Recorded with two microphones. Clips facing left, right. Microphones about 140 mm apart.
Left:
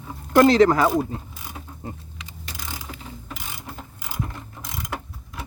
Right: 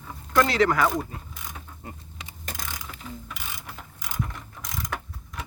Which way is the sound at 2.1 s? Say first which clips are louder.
Right 1 dB; 40° right (ahead or behind).